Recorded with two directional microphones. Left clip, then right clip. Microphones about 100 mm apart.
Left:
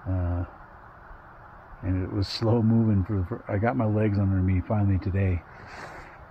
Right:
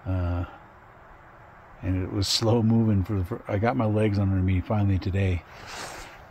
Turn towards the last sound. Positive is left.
turn(degrees=-30)  # may be behind; listen again after turning